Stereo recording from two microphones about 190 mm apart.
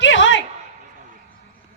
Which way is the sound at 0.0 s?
75° left (ahead or behind).